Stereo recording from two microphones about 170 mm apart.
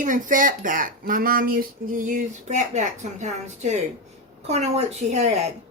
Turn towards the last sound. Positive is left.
turn(degrees=-40)  # may be behind; listen again after turning